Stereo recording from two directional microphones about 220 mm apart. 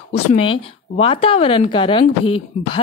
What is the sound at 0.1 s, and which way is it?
A woman's voice, 25° left (ahead or behind).